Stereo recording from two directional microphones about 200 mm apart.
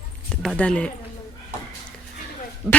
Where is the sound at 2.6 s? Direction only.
10° right (ahead or behind).